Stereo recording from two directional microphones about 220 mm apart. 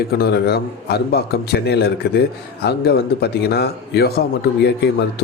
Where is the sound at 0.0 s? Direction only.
45° left (ahead or behind).